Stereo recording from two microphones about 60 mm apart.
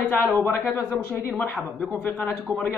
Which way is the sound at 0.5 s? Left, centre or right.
Left.